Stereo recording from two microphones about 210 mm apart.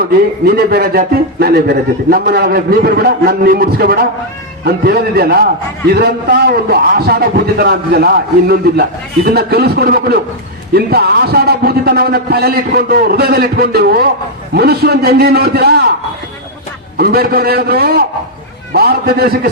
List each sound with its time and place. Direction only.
0.4 s a man's voice: 50° right (ahead or behind)
17.0 s a man's voice: 50° right (ahead or behind)